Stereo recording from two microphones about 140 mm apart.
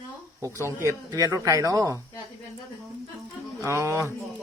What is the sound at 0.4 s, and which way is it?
Speech, 20° right (ahead or behind).